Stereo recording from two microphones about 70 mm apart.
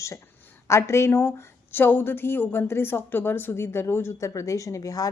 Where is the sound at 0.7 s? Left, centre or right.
Left.